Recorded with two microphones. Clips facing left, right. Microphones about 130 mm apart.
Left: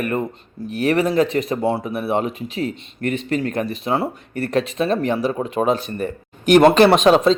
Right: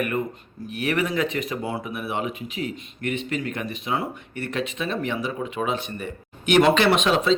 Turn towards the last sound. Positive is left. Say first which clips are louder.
# left 7 dB
turn(degrees=40)  # may be behind; listen again after turning